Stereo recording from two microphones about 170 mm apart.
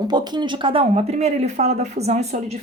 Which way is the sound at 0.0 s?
25° right (ahead or behind).